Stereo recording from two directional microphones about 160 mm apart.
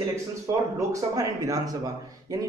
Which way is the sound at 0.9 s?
20° right (ahead or behind).